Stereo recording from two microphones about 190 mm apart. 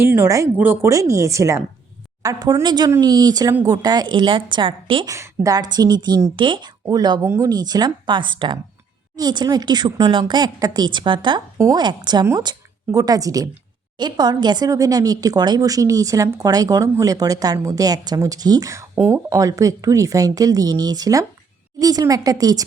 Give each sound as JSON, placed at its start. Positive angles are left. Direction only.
{"t": 0.0, "sound": "speech", "side_deg": -10}
{"t": 5.1, "sound": "speech", "side_deg": -15}